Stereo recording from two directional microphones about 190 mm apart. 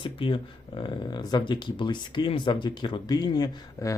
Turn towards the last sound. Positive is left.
turn(degrees=20)  # may be behind; listen again after turning